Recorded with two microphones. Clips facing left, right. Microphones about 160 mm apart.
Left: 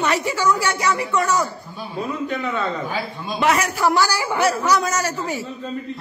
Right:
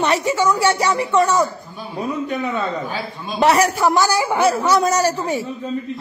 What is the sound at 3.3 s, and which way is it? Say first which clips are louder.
Speech: right 5 dB; 35° right (ahead or behind).